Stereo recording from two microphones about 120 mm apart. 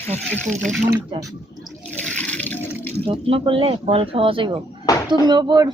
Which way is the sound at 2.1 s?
10° left (ahead or behind).